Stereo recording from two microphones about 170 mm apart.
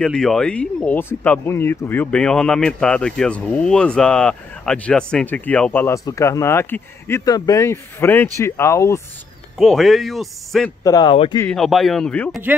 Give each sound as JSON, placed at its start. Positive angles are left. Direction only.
{"t": 0.0, "sound": "speech", "side_deg": 5}
{"t": 9.6, "sound": "speech", "side_deg": 0}
{"t": 10.8, "sound": "a man's voice", "side_deg": 25}
{"t": 11.4, "sound": "speech", "side_deg": 0}